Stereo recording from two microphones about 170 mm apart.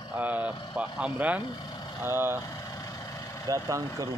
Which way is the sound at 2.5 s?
20° left (ahead or behind).